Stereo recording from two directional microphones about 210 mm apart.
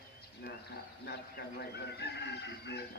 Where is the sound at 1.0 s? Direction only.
50° left (ahead or behind).